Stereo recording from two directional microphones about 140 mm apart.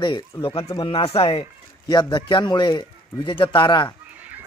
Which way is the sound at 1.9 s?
30° left (ahead or behind).